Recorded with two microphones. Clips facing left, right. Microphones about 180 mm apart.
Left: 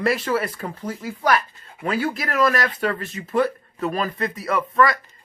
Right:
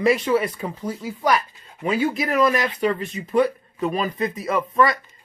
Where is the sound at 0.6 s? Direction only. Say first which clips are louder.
Right 1 dB; 10° right (ahead or behind).